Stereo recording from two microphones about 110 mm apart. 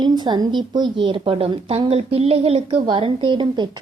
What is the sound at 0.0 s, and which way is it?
A woman's voice, 45° right (ahead or behind).